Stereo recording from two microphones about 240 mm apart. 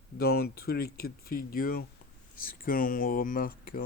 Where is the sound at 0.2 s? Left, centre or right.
Left.